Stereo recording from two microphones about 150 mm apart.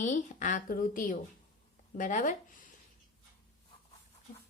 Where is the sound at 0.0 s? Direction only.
55° left (ahead or behind).